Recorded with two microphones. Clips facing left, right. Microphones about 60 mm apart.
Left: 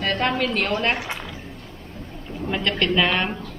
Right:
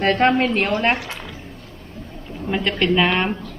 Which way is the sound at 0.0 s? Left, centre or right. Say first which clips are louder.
Right 6 dB; right.